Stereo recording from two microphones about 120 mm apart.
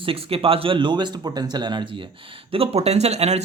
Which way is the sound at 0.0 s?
50° right (ahead or behind).